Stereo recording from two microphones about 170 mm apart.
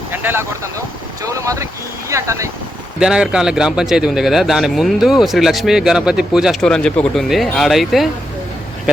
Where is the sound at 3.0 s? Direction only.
5° right (ahead or behind).